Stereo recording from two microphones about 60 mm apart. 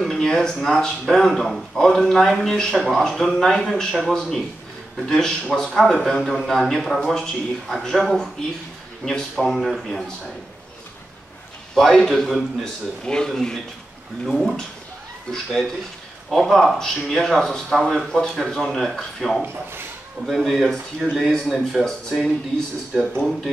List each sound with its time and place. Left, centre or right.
0.0 s a man's voice: centre
11.7 s a man's voice: centre
13.0 s a man's voice: centre
19.4 s speech: right
20.2 s a man's voice: centre